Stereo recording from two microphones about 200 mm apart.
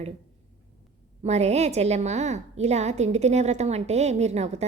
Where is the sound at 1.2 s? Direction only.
35° right (ahead or behind).